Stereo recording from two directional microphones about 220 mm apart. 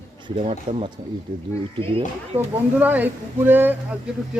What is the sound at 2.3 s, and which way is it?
Speech, 10° right (ahead or behind).